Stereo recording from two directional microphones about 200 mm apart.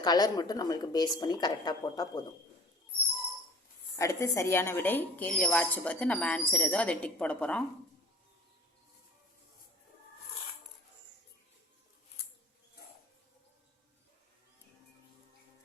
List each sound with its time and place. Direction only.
0.0 s a woman's voice: 20° left (ahead or behind)
3.9 s a woman's voice: 15° left (ahead or behind)